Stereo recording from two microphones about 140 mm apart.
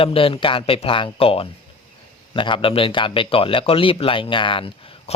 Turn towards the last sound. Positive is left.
turn(degrees=40)  # may be behind; listen again after turning